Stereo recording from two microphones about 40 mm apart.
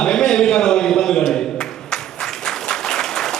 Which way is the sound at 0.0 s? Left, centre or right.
Centre.